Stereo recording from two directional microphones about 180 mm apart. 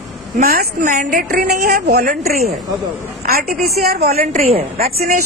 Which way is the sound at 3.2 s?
55° right (ahead or behind).